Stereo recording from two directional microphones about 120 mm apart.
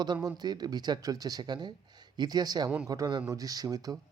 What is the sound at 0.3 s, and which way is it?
Speech, 35° right (ahead or behind).